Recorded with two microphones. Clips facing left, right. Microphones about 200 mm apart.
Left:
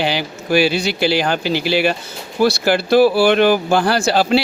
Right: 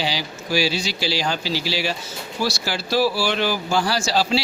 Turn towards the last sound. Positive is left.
turn(degrees=55)  # may be behind; listen again after turning